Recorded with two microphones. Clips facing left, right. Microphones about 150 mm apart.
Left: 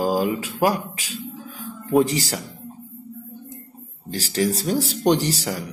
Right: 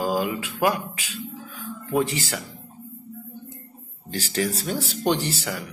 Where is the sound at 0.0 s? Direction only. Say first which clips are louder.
Left 3 dB; 40° left (ahead or behind).